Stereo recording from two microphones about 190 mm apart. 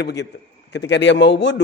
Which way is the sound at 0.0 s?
65° left (ahead or behind).